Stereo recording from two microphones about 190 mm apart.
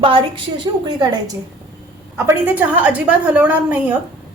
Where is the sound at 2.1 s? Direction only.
10° right (ahead or behind).